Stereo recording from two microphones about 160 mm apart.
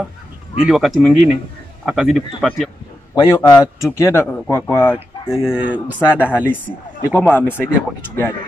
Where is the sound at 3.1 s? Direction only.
25° left (ahead or behind).